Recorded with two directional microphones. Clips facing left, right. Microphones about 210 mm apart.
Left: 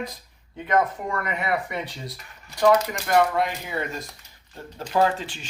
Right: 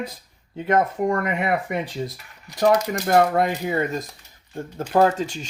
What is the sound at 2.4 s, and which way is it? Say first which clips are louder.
Speech: even; 40° right (ahead or behind).